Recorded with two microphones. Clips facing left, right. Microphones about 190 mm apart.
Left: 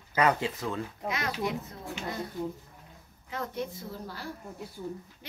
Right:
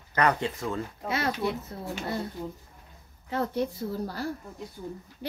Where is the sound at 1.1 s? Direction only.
35° right (ahead or behind).